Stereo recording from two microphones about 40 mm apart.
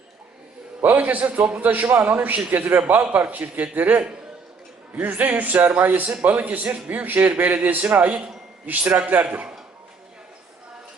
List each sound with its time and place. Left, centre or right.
0.8 s a man's voice: right
9.2 s a man's voice: right